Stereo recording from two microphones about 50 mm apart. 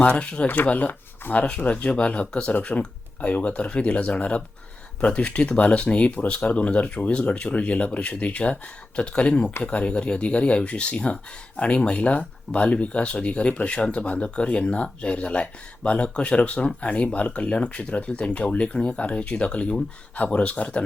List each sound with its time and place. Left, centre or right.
0.0 s speech: left
0.4 s speech: left
0.7 s speech: left